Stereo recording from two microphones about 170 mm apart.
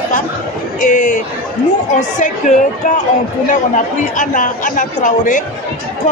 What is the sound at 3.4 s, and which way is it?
Speech, 50° left (ahead or behind).